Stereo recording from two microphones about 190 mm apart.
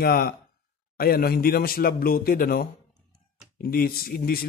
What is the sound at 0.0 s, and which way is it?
Speech, 55° left (ahead or behind).